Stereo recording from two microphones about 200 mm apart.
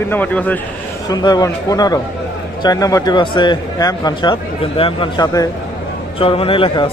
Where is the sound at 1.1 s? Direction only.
20° left (ahead or behind).